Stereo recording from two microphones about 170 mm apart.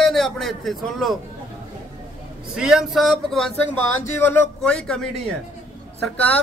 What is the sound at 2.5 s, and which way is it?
Speech, 5° right (ahead or behind).